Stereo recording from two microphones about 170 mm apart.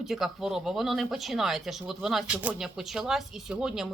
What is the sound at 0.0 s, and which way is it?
Speech, centre (ahead or behind).